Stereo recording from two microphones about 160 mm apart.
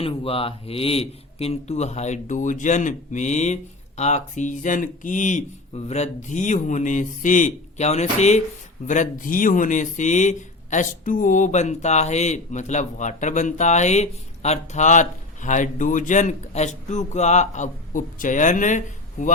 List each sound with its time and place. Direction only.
0.0 s speech: 35° left (ahead or behind); by 18.8 s 50° left (ahead or behind)